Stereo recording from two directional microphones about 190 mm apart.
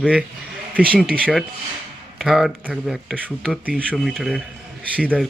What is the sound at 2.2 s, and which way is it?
Speech, centre (ahead or behind).